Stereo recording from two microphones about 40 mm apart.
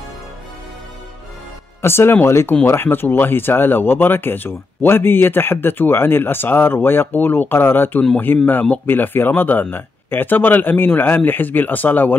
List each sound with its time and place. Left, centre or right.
1.8 s speech: left